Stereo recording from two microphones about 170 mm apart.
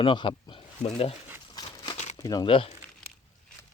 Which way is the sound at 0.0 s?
30° left (ahead or behind).